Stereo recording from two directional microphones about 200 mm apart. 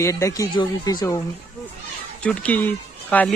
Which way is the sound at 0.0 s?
15° left (ahead or behind).